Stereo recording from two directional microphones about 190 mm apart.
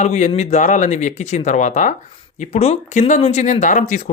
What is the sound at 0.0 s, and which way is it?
Speech, 35° left (ahead or behind).